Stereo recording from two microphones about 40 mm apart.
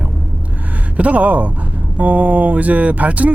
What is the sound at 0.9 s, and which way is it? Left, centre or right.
Speech, right.